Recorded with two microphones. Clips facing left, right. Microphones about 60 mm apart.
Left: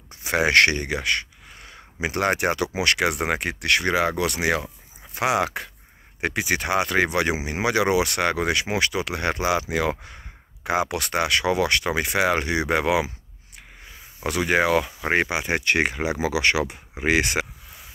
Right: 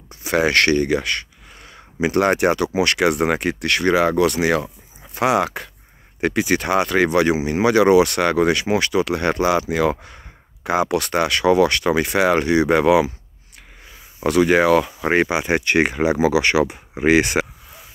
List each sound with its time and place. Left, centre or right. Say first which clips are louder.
0.2 s speech: right 1 dB; centre
14.2 s speech: right 6 dB; centre
15.0 s speech: right 4 dB; centre
15.5 s speech: right 3 dB; centre
16.9 s speech: right 6 dB; right